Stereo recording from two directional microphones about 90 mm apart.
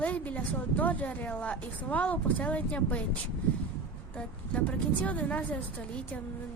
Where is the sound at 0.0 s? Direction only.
15° left (ahead or behind).